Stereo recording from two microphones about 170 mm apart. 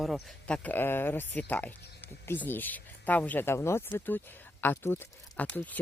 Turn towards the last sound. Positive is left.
turn(degrees=10)  # may be behind; listen again after turning